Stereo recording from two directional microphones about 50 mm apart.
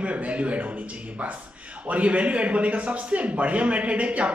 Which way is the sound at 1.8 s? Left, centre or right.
Right.